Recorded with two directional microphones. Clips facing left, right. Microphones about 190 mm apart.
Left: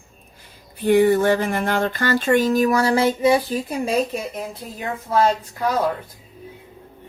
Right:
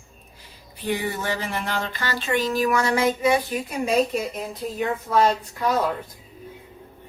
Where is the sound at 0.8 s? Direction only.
50° left (ahead or behind); by 3.9 s 30° left (ahead or behind).